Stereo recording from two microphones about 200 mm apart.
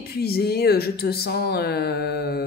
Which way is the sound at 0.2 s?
50° left (ahead or behind).